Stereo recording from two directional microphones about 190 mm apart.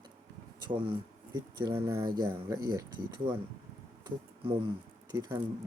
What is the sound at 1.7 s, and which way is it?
Speech, 15° right (ahead or behind).